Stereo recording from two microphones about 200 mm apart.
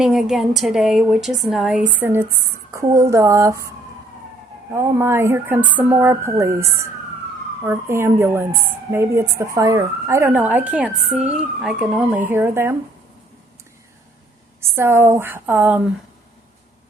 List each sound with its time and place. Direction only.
0.0 s a woman's voice: centre (ahead or behind)
4.7 s speech: 15° right (ahead or behind)
14.6 s speech: 10° right (ahead or behind)